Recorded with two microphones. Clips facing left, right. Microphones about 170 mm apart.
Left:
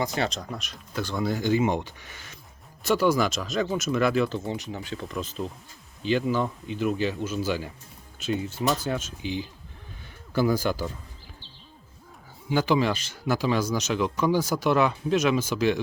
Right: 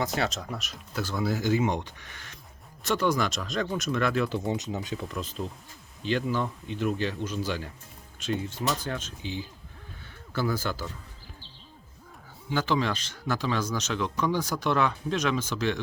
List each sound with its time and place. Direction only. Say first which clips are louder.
0.0 s speech: left 1 dB; centre (ahead or behind)
4.4 s speech: right 2 dB; 20° right (ahead or behind)
4.9 s speech: left 2 dB; centre (ahead or behind)
12.5 s speech: left 4 dB; 10° left (ahead or behind)